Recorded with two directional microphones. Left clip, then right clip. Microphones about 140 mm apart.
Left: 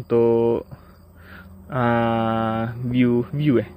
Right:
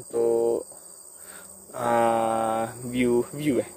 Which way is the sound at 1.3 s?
20° right (ahead or behind).